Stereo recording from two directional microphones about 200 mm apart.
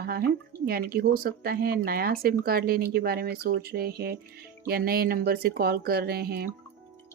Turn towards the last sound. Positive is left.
turn(degrees=-50)  # may be behind; listen again after turning